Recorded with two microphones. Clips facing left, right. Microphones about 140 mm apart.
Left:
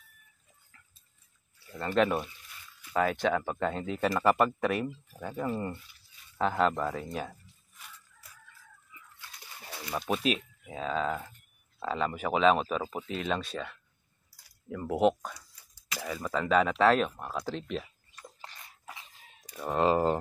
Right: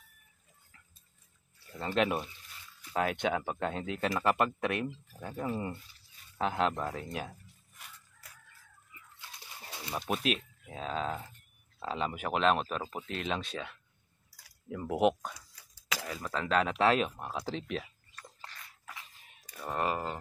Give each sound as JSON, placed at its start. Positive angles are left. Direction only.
{"t": 1.8, "sound": "speech", "side_deg": -5}
{"t": 9.9, "sound": "speech", "side_deg": 0}
{"t": 18.1, "sound": "a sound", "side_deg": 20}
{"t": 19.6, "sound": "speech", "side_deg": 20}